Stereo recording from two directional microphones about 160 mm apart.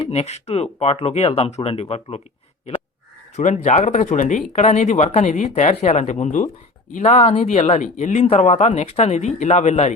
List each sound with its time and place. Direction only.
0.1 s speech: 45° left (ahead or behind)
3.3 s speech: 50° left (ahead or behind)